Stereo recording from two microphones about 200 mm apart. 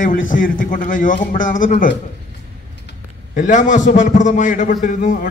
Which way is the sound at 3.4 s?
40° left (ahead or behind).